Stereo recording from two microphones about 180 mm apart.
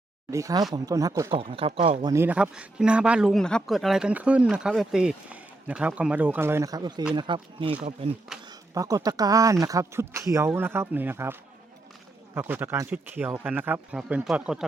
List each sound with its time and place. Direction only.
0.3 s speech: 20° right (ahead or behind)
1.3 s speech: 30° right (ahead or behind)
2.1 s speech: 10° right (ahead or behind); by 7.8 s 25° right (ahead or behind)
8.3 s a sound: 5° right (ahead or behind)
8.7 s speech: 20° right (ahead or behind)